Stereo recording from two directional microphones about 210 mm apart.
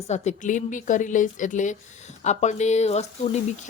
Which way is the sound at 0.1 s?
35° left (ahead or behind).